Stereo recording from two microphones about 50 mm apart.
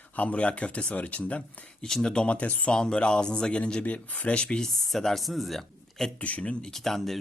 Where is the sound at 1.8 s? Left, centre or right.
Centre.